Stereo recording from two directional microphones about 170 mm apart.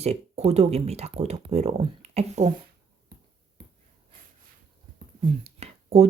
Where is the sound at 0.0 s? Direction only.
40° right (ahead or behind).